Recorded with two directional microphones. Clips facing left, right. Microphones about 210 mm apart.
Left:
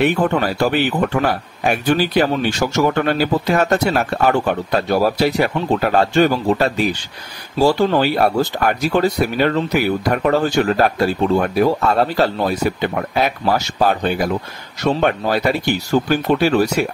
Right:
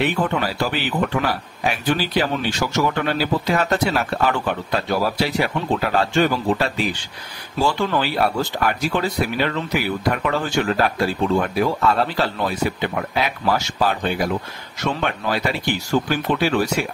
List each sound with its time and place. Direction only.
0.0 s speech: 50° left (ahead or behind)